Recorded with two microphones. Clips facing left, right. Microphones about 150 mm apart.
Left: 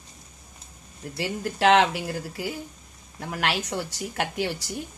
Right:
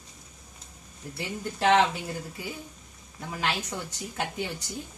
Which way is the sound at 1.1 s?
85° left.